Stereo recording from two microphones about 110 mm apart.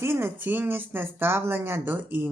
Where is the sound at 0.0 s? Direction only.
20° right (ahead or behind).